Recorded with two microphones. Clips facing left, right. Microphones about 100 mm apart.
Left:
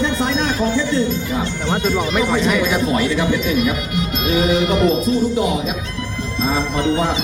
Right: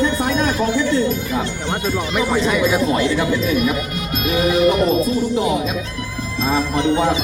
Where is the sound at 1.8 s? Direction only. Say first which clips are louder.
Left 2 dB; 10° right (ahead or behind).